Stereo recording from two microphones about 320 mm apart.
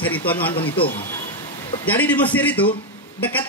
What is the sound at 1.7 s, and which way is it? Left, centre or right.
Speech, centre.